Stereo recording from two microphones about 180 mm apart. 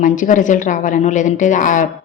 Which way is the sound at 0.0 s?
45° left (ahead or behind).